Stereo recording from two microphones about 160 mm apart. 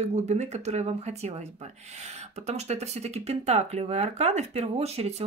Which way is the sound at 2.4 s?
45° right (ahead or behind).